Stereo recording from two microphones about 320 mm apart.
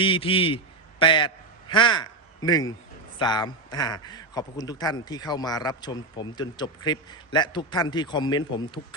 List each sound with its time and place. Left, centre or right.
0.0 s a man's voice: centre